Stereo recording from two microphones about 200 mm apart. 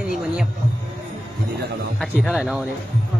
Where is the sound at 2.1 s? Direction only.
5° right (ahead or behind).